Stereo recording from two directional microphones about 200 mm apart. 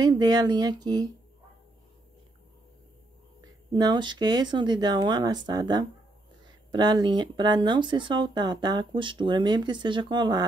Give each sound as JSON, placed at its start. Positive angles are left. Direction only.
{"t": 0.0, "sound": "speech", "side_deg": -20}
{"t": 3.3, "sound": "speech", "side_deg": -20}